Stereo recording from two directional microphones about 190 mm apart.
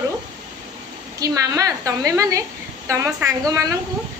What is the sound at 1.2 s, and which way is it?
A woman's voice, 15° right (ahead or behind).